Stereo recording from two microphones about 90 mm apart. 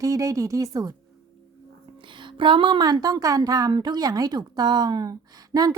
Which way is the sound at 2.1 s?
65° right (ahead or behind).